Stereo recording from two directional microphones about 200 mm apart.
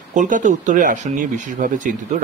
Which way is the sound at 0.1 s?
40° right (ahead or behind).